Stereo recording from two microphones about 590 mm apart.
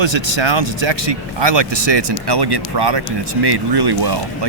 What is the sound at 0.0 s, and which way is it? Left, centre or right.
Speech, right.